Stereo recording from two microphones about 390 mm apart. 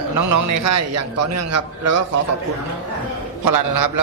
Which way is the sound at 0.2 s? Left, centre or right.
Right.